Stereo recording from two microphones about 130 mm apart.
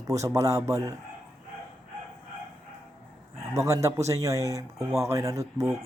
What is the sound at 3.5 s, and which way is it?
Speech, 25° right (ahead or behind).